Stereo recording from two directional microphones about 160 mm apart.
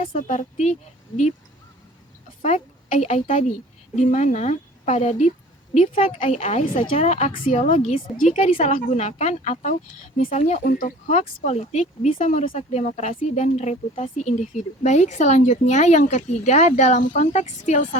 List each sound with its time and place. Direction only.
0.0 s speech: 55° left (ahead or behind)
2.4 s speech: 45° left (ahead or behind)
6.1 s speech: 40° left (ahead or behind)
8.2 s speech: 55° left (ahead or behind)
10.6 s speech: 60° left (ahead or behind)
11.2 s speech: 45° left (ahead or behind)